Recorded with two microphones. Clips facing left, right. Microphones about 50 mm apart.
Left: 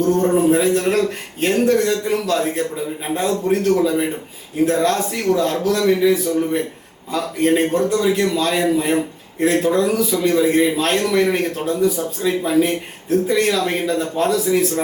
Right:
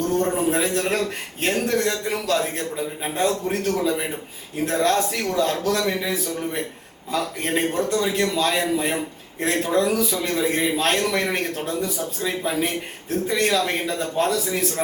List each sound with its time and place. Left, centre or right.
0.0 s a man's voice: centre